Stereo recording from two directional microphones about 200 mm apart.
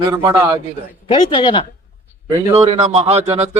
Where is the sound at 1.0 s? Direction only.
25° left (ahead or behind).